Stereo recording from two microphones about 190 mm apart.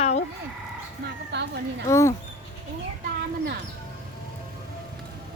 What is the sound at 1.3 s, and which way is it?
Speech, 65° right (ahead or behind).